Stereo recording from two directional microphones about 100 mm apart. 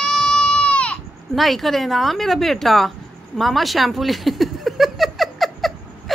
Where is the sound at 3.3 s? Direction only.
Centre (ahead or behind).